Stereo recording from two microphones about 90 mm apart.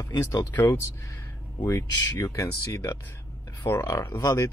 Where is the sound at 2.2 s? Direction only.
35° left (ahead or behind).